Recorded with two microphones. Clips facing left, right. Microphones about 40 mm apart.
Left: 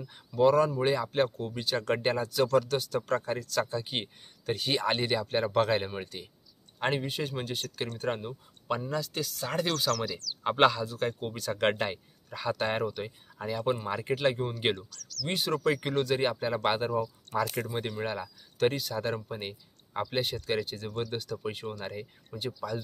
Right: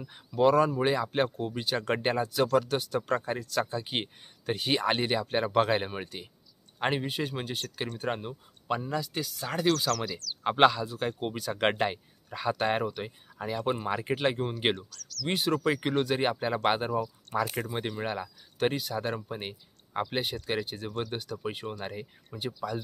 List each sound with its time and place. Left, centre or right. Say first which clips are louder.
0.0 s speech: even; centre
9.9 s speech: even; centre
10.4 s speech: right 1 dB; centre
10.9 s speech: even; right
15.2 s speech: right 1 dB; centre
18.6 s speech: left 1 dB; centre
19.0 s speech: even; centre
22.5 s speech: right 1 dB; right